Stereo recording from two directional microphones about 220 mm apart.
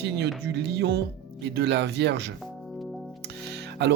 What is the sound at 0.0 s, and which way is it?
Speech, 50° right (ahead or behind).